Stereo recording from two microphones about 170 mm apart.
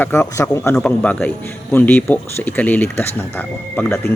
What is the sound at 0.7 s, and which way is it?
Speech, 5° left (ahead or behind).